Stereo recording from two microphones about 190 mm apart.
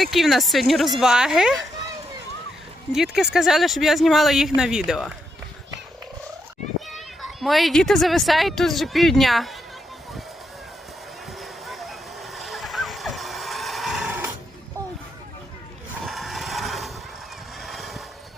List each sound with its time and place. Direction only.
0.0 s speech: centre (ahead or behind)
2.9 s speech: centre (ahead or behind)
6.9 s speech: centre (ahead or behind)
11.3 s vehicle: centre (ahead or behind)
16.0 s vehicle: centre (ahead or behind)